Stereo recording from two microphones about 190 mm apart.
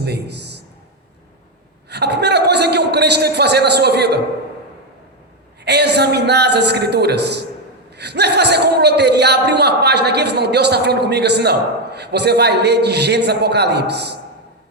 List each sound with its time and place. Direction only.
0.0 s a man's voice: 60° right (ahead or behind)
1.9 s a man's voice: 60° right (ahead or behind)
5.6 s a man's voice: 60° right (ahead or behind)